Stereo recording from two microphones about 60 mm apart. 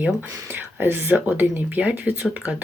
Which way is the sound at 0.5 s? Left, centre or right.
Right.